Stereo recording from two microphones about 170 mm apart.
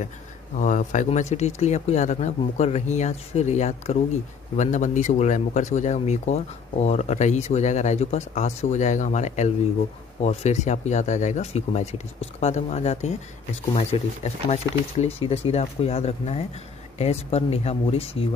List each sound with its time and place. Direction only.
0.6 s speech: 50° left (ahead or behind)